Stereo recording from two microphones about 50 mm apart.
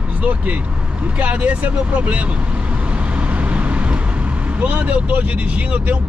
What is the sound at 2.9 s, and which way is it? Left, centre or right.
Vehicle, right.